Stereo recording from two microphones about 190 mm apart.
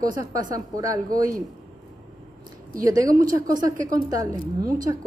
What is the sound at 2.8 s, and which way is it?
A woman's voice, 20° right (ahead or behind).